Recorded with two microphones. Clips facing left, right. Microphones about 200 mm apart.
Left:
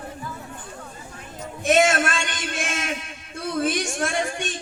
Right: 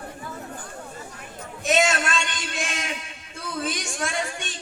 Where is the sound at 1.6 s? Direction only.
50° left (ahead or behind).